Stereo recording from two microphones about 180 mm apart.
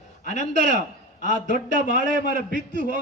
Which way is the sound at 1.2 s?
45° left (ahead or behind).